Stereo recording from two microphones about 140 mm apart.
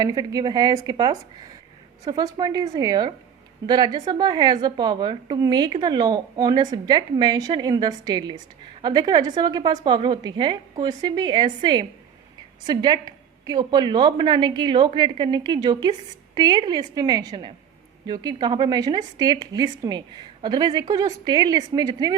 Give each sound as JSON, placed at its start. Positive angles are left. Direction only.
{"t": 0.0, "sound": "a woman's voice", "side_deg": -30}